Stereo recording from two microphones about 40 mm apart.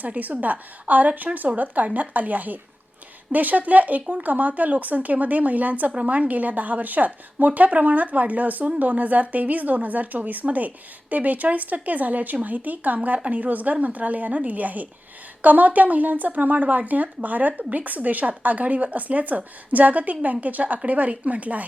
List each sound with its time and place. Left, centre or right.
0.0 s a woman's voice: right